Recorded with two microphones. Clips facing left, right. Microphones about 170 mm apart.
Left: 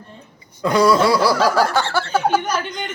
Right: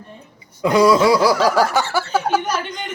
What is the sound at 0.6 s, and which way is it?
Snicker, 15° right (ahead or behind).